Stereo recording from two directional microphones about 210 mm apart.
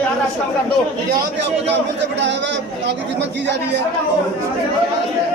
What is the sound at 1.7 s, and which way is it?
A man's voice, 55° right (ahead or behind).